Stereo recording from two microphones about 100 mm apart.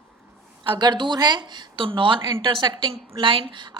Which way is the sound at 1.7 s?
60° right (ahead or behind).